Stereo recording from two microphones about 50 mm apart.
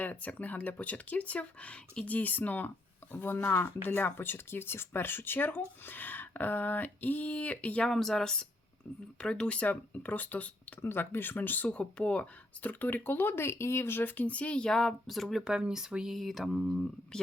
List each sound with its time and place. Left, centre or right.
0.0 s speech: left
7.9 s speech: centre; by 10.5 s left
10.8 s speech: left
11.7 s speech: left
12.8 s speech: left
14.3 s speech: left
14.7 s speech: centre
15.4 s speech: centre
16.1 s speech: centre